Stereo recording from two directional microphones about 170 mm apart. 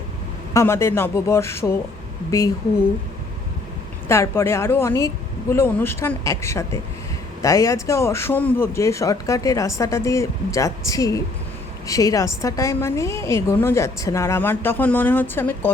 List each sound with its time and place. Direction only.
0.5 s a woman's voice: 15° left (ahead or behind)
4.1 s a woman's voice: 15° left (ahead or behind)